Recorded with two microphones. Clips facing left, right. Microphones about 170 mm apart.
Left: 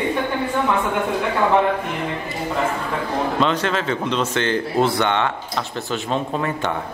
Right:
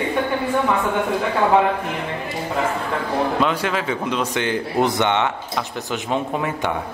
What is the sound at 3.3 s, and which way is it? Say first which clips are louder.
A man's voice: left 1 dB; 10° right (ahead or behind).